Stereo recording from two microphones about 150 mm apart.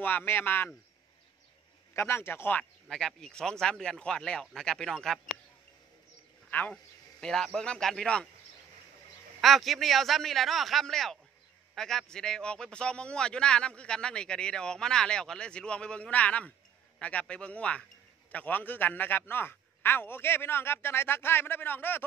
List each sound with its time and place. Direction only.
0.0 s speech: 15° left (ahead or behind)
2.0 s speech: 15° left (ahead or behind)
2.9 s a man's voice: centre (ahead or behind)
6.7 s a man's voice: 5° left (ahead or behind)
9.4 s a man's voice: centre (ahead or behind)